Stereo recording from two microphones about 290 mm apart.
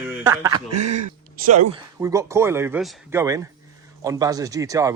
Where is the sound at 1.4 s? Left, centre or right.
Right.